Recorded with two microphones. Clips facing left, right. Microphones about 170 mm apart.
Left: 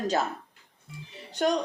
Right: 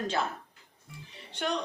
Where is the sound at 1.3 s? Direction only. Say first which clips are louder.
Left 7 dB; 40° left (ahead or behind).